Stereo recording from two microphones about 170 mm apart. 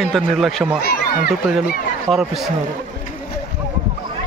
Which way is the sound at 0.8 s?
65° left (ahead or behind).